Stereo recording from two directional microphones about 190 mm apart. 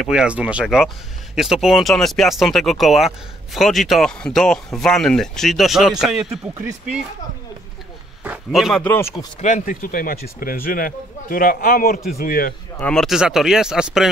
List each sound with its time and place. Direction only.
0.0 s speech: 5° right (ahead or behind)
8.2 s speech: 5° right (ahead or behind)
8.8 s speech: 10° left (ahead or behind)
9.4 s speech: 45° left (ahead or behind)
12.8 s speech: centre (ahead or behind)